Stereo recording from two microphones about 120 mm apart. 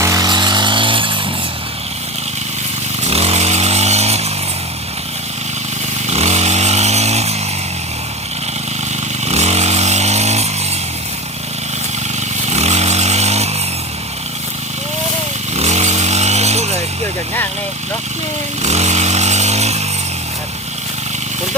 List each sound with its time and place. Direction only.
0.0 s chainsaw: 30° right (ahead or behind); by 1.2 s 45° right (ahead or behind)
3.1 s chainsaw: 60° right (ahead or behind)
6.1 s chainsaw: 65° right (ahead or behind)
9.2 s chainsaw: 65° right (ahead or behind)
12.5 s vehicle: 65° right (ahead or behind)
15.5 s chainsaw: 70° right (ahead or behind)
18.6 s chainsaw: 70° right (ahead or behind)